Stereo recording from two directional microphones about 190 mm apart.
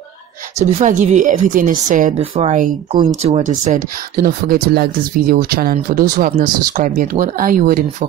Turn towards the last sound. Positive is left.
turn(degrees=-50)  # may be behind; listen again after turning